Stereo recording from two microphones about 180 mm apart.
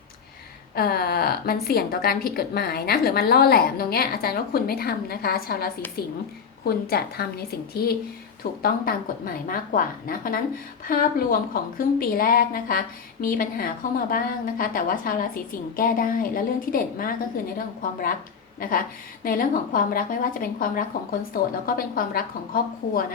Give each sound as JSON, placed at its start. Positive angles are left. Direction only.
{"t": 0.8, "sound": "a woman's voice", "side_deg": 55}
{"t": 19.2, "sound": "speech", "side_deg": 50}